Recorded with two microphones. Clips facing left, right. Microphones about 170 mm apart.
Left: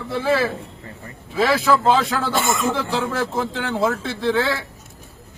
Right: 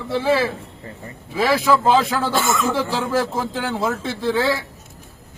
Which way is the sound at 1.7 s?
5° right (ahead or behind).